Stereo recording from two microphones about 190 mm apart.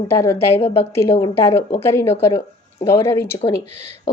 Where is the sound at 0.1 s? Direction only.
15° left (ahead or behind).